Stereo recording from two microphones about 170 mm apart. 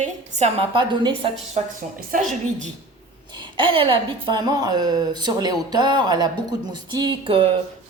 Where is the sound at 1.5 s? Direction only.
50° right (ahead or behind).